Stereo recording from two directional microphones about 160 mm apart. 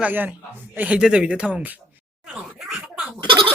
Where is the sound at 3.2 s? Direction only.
30° right (ahead or behind).